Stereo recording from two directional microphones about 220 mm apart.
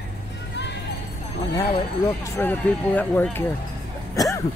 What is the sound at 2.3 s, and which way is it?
Speech, 5° left (ahead or behind).